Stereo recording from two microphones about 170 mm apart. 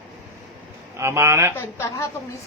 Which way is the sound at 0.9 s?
15° right (ahead or behind).